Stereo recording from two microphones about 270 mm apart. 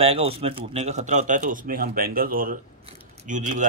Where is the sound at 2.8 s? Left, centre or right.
Right.